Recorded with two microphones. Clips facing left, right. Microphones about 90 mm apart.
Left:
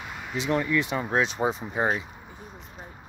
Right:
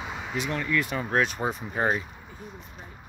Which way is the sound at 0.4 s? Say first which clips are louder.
Left 3 dB; 25° left (ahead or behind).